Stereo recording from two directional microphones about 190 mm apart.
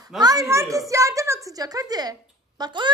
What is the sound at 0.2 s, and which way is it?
A woman's voice, 20° right (ahead or behind).